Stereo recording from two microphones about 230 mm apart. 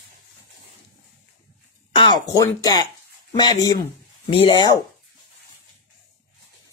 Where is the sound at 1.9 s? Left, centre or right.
Centre.